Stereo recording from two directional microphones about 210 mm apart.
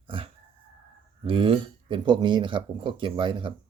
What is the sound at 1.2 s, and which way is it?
Speech, 25° right (ahead or behind).